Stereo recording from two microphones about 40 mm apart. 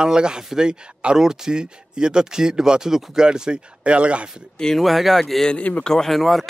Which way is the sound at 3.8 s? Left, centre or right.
Right.